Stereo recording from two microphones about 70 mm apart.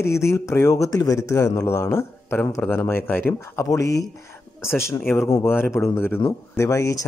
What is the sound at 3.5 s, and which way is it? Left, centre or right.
Speech, left.